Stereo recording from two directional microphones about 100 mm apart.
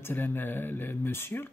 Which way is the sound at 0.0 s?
20° left (ahead or behind).